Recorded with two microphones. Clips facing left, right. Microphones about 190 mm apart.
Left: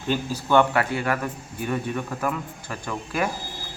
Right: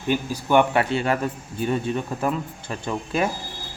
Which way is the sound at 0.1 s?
15° right (ahead or behind).